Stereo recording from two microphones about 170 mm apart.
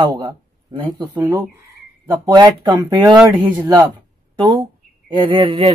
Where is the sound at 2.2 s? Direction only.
20° right (ahead or behind).